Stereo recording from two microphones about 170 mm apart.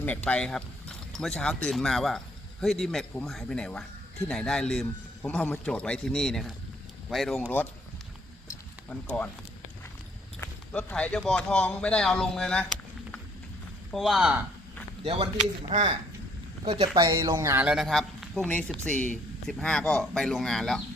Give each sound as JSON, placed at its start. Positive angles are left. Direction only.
{"t": 0.0, "sound": "a man's voice", "side_deg": 10}
{"t": 8.9, "sound": "speech", "side_deg": 10}
{"t": 10.4, "sound": "a man's voice", "side_deg": 5}
{"t": 13.9, "sound": "a man's voice", "side_deg": 0}
{"t": 15.0, "sound": "a man's voice", "side_deg": -35}